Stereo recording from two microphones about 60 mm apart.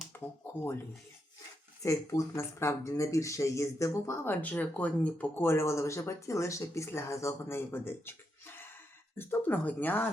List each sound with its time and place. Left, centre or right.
0.1 s speech: left
1.8 s speech: left
4.2 s speech: left
5.4 s speech: left